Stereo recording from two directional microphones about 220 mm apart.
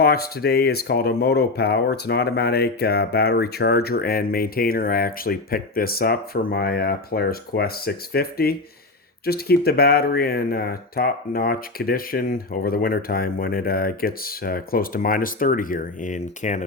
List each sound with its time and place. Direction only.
0.0 s speech: 45° left (ahead or behind)